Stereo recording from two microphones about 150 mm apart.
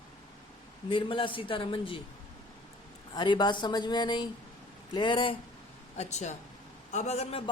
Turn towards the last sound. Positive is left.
turn(degrees=45)  # may be behind; listen again after turning